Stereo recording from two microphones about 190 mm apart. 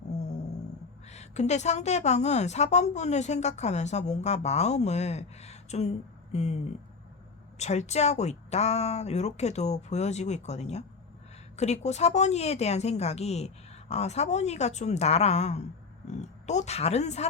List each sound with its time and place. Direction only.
0.1 s a sound: 35° left (ahead or behind)
1.1 s a woman's voice: 35° left (ahead or behind)
7.6 s a woman's voice: 35° left (ahead or behind)